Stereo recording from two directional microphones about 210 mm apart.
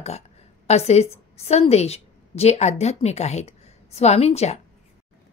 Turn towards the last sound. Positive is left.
turn(degrees=30)  # may be behind; listen again after turning